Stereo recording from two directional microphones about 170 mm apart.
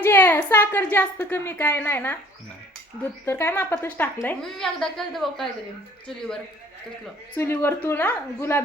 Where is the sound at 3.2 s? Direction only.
15° left (ahead or behind).